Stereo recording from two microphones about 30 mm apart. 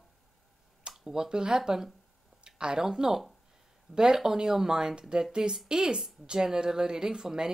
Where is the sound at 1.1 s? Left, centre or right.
Right.